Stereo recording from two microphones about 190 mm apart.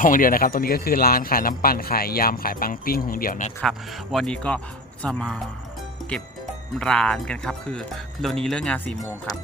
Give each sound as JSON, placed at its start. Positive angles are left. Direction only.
{"t": 0.0, "sound": "speech", "side_deg": 45}
{"t": 3.6, "sound": "speech", "side_deg": 0}
{"t": 6.7, "sound": "speech", "side_deg": 5}